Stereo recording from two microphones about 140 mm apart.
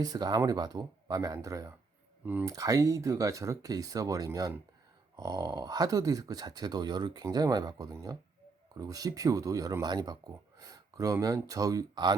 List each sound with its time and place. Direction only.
0.0 s speech: 30° right (ahead or behind)
10.6 s a sound: 25° right (ahead or behind)
11.3 s speech: 25° right (ahead or behind)